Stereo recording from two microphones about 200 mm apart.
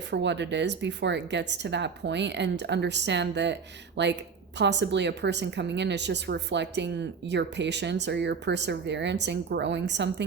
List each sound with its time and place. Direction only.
0.1 s speech: 60° right (ahead or behind)